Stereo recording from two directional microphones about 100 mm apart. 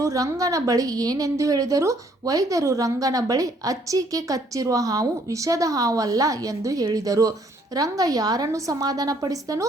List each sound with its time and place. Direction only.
0.0 s a woman's voice: 30° right (ahead or behind)